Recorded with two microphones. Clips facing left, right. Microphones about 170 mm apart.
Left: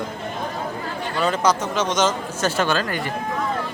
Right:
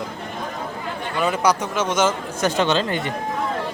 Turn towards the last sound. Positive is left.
turn(degrees=-25)  # may be behind; listen again after turning